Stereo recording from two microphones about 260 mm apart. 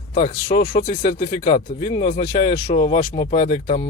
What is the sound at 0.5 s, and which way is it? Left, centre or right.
Speech, centre.